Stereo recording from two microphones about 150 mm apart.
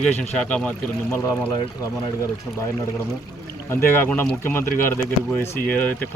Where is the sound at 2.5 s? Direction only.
Centre (ahead or behind).